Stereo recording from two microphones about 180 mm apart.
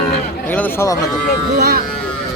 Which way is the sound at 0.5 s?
15° left (ahead or behind).